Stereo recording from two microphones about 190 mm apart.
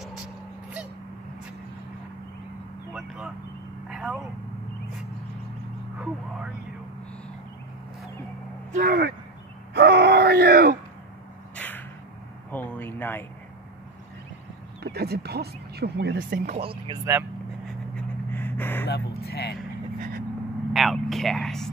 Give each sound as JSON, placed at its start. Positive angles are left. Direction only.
{"t": 3.9, "sound": "vehicle", "side_deg": -5}
{"t": 5.9, "sound": "vehicle", "side_deg": -5}
{"t": 8.7, "sound": "speech", "side_deg": -50}
{"t": 9.8, "sound": "groan", "side_deg": -60}
{"t": 11.5, "sound": "a sound", "side_deg": 10}
{"t": 14.8, "sound": "speech", "side_deg": -55}
{"t": 16.4, "sound": "speech", "side_deg": -30}
{"t": 18.3, "sound": "gasp", "side_deg": 10}
{"t": 18.9, "sound": "speech", "side_deg": 60}
{"t": 20.0, "sound": "vehicle", "side_deg": -55}
{"t": 20.7, "sound": "vehicle", "side_deg": 0}